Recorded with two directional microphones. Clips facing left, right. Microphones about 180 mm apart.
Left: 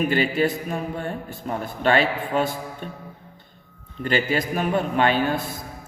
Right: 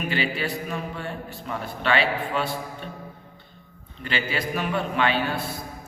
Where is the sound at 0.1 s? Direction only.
45° left (ahead or behind).